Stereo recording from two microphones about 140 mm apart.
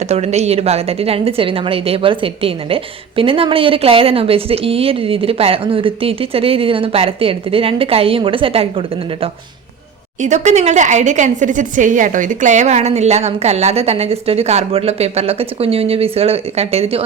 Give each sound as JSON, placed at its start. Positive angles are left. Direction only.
{"t": 0.1, "sound": "a woman's voice", "side_deg": -50}
{"t": 10.2, "sound": "a woman's voice", "side_deg": -60}